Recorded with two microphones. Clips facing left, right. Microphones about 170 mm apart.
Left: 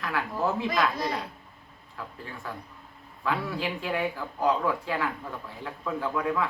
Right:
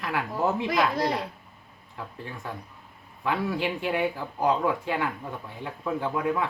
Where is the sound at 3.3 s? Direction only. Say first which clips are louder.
Right 2 dB; 25° right (ahead or behind).